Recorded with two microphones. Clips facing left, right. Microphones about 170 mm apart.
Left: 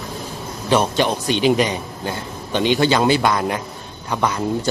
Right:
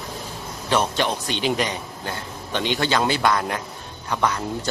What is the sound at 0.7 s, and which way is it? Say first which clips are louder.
A man's voice: left 4 dB; 10° left (ahead or behind).